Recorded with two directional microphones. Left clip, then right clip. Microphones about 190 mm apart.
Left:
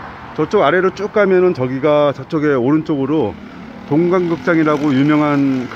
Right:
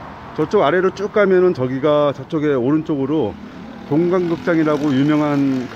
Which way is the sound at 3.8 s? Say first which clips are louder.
Left 2 dB; 5° left (ahead or behind).